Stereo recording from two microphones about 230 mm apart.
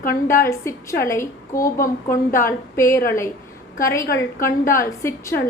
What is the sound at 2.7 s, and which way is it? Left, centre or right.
A woman's voice, centre.